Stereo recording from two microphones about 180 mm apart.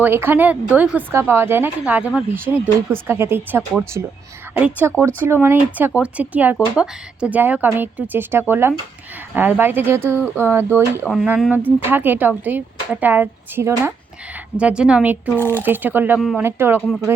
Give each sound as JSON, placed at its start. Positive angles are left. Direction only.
{"t": 0.0, "sound": "speech", "side_deg": -10}
{"t": 11.1, "sound": "speech", "side_deg": 0}
{"t": 15.4, "sound": "speech", "side_deg": 10}
{"t": 15.6, "sound": "speech", "side_deg": -10}
{"t": 16.8, "sound": "speech", "side_deg": 0}